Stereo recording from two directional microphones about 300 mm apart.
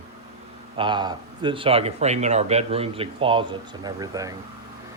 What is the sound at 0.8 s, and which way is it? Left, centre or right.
A man's voice, centre.